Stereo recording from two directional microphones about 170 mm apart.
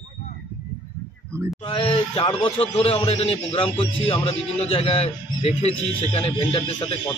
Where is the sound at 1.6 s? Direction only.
30° left (ahead or behind).